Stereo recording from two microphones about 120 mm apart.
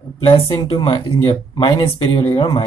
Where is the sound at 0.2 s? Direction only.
45° left (ahead or behind).